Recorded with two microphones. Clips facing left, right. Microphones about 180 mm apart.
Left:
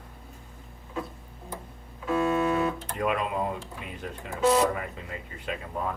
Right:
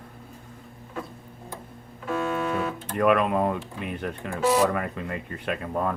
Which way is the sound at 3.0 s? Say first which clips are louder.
Right 7 dB; 65° right (ahead or behind).